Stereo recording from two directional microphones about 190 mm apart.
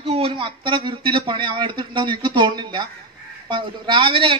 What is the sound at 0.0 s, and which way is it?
A man's voice, 30° right (ahead or behind).